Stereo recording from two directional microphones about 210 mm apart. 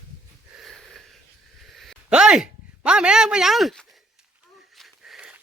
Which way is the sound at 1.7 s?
Centre (ahead or behind).